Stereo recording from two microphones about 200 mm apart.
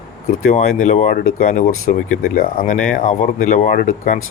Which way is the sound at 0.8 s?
40° left (ahead or behind).